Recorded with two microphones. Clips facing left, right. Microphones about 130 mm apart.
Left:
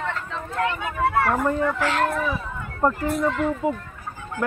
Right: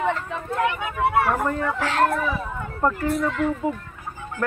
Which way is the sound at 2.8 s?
15° left (ahead or behind).